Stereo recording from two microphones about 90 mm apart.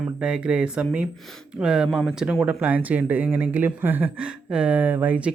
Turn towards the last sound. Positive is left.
turn(degrees=-15)  # may be behind; listen again after turning